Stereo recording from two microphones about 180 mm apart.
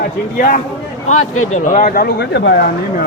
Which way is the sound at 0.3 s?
50° left (ahead or behind).